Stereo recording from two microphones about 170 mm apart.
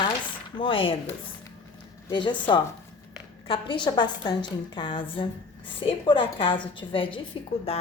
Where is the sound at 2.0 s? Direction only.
25° left (ahead or behind).